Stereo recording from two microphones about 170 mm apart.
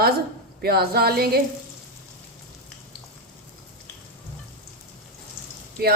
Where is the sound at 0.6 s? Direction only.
65° right (ahead or behind).